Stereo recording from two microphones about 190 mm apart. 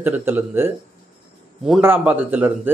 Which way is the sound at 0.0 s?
10° right (ahead or behind).